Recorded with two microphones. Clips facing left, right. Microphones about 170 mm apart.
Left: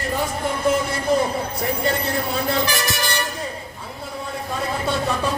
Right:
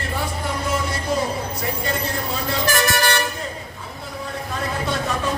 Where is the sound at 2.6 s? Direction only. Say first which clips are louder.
Right 4 dB; 50° right (ahead or behind).